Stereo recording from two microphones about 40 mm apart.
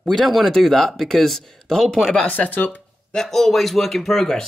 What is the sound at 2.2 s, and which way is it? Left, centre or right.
Speech, left.